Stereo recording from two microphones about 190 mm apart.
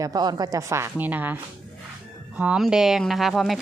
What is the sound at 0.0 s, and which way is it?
Speech, 20° right (ahead or behind).